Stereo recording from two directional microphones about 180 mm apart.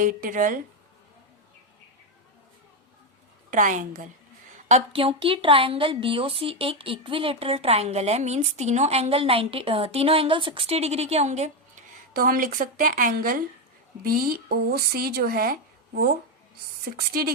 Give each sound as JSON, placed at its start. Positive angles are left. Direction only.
{"t": 0.0, "sound": "a woman's voice", "side_deg": -50}
{"t": 3.5, "sound": "a woman's voice", "side_deg": -45}
{"t": 4.7, "sound": "a woman's voice", "side_deg": -30}
{"t": 12.1, "sound": "a woman's voice", "side_deg": -55}
{"t": 17.1, "sound": "speech", "side_deg": -55}